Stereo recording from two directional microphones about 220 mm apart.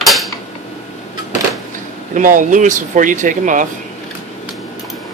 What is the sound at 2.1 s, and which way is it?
Speech, 35° right (ahead or behind).